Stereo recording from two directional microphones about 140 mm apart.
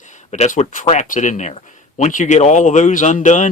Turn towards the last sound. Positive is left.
turn(degrees=60)  # may be behind; listen again after turning